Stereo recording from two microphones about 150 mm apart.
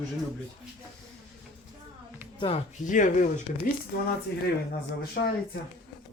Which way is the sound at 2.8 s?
55° left (ahead or behind).